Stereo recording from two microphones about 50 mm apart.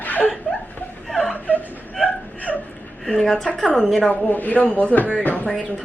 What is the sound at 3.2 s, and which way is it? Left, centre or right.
Speech, centre.